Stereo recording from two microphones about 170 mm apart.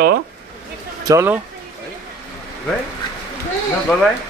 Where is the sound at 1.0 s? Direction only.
15° right (ahead or behind).